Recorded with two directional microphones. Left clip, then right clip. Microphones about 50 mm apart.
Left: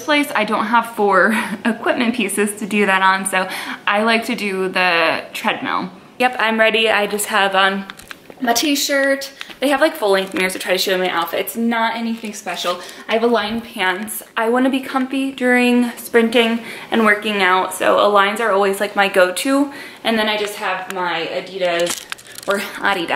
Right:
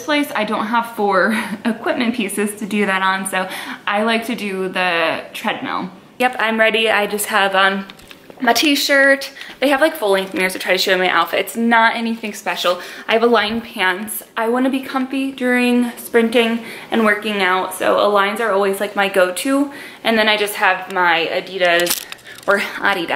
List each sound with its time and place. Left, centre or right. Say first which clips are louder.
0.0 s a woman's voice: left 2 dB; centre
1.7 s a woman's voice: left 1 dB; centre
8.5 s a woman's voice: right 3 dB; right
9.6 s a woman's voice: right 1 dB; centre
10.3 s a woman's voice: right 1 dB; right
14.3 s speech: left 1 dB; centre
20.0 s a woman's voice: right 3 dB; right
22.8 s a woman's voice: right 1 dB; centre